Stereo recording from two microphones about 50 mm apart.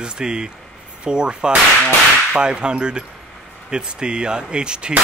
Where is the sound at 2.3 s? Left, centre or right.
Centre.